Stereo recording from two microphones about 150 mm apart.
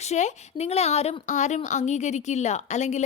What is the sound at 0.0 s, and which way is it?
Speech, 50° left (ahead or behind).